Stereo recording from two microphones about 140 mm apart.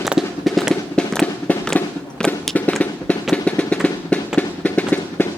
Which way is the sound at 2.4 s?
5° left (ahead or behind).